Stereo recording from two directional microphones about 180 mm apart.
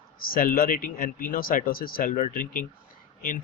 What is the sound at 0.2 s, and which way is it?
A man's voice, 55° left (ahead or behind).